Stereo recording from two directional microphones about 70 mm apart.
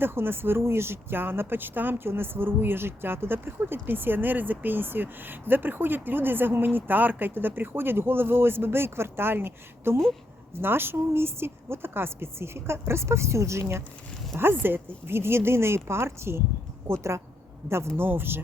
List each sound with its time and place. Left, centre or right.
0.0 s speech: right